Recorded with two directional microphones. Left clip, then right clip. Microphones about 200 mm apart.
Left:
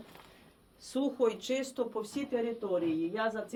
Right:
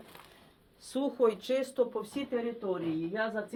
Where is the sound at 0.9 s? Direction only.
15° right (ahead or behind).